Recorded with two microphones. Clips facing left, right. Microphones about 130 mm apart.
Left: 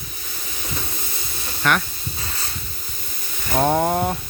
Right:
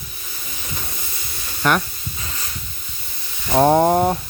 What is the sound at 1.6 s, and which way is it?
Speech, 35° right (ahead or behind).